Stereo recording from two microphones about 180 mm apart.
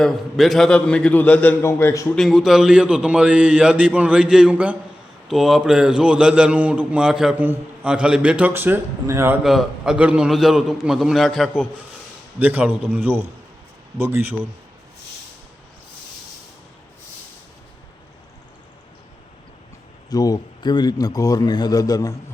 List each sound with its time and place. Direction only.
0.0 s a man's voice: centre (ahead or behind)
2.1 s a man's voice: centre (ahead or behind)
9.4 s a man's voice: centre (ahead or behind)
20.1 s a man's voice: 20° left (ahead or behind)